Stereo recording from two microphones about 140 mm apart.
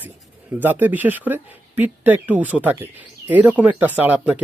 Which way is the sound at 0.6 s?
15° right (ahead or behind).